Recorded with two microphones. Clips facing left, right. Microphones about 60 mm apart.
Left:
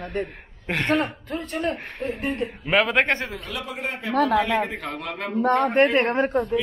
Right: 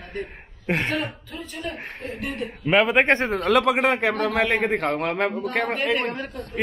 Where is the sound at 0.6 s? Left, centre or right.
Centre.